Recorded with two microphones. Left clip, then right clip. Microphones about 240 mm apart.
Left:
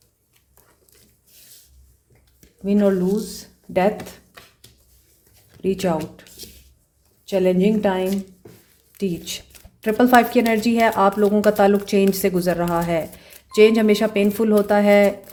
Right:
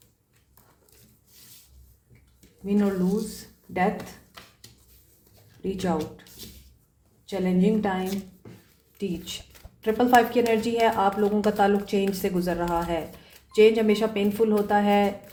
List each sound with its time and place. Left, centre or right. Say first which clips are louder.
2.6 s speech: left 8 dB; left
3.3 s a sound: left 7 dB; left
5.6 s speech: left 6 dB; left
7.3 s speech: left 7 dB; left